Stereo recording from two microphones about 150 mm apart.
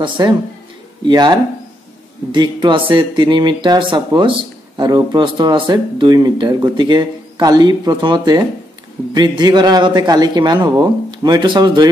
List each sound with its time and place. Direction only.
0.0 s speech: 30° right (ahead or behind)